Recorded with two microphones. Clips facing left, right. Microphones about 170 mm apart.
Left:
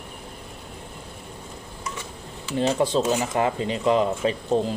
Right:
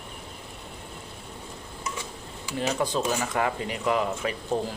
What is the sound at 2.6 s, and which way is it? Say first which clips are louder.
Speech: left 5 dB; 25° left (ahead or behind).